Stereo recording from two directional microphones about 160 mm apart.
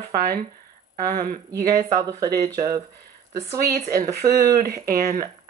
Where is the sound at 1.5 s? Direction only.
20° right (ahead or behind).